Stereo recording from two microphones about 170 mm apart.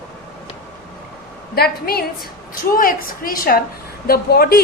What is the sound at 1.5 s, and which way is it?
A woman's voice, 65° left (ahead or behind).